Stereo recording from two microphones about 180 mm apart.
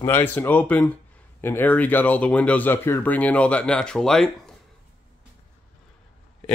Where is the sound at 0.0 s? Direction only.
10° left (ahead or behind).